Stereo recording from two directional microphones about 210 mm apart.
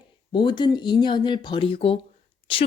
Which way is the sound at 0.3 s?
20° left (ahead or behind).